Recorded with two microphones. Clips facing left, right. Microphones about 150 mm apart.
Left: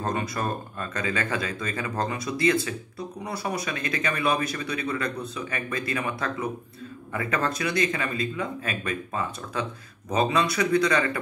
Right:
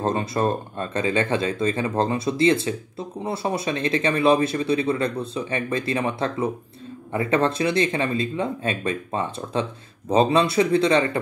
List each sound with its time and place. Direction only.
0.0 s speech: 25° right (ahead or behind)